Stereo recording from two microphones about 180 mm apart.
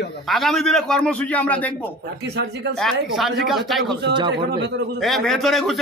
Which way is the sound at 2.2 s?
65° right (ahead or behind).